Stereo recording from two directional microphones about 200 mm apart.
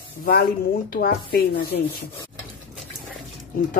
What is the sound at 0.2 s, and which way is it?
Speech, 45° left (ahead or behind).